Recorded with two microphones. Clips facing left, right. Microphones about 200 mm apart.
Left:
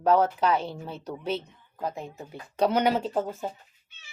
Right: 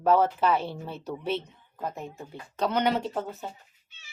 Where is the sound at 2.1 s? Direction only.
10° left (ahead or behind).